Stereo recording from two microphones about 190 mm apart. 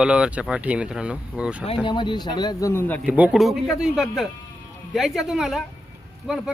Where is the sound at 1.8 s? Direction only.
25° left (ahead or behind).